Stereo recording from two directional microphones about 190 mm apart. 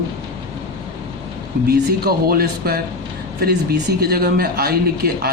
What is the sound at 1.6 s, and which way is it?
Speech, 55° right (ahead or behind).